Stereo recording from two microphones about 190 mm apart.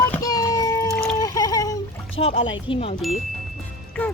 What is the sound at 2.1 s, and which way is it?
Speech, 30° left (ahead or behind).